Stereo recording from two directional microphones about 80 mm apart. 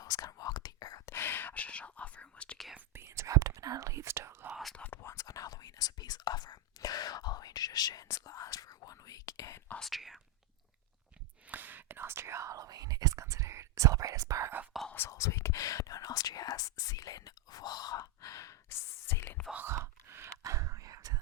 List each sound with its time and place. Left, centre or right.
0.0 s whispering: left
1.1 s whispering: left
2.9 s whispering: right
4.7 s whispering: centre
5.0 s whispering: left
8.0 s whispering: left
9.8 s whispering: centre
11.4 s whispering: right
14.7 s whispering: centre
15.1 s whispering: left
19.5 s whispering: right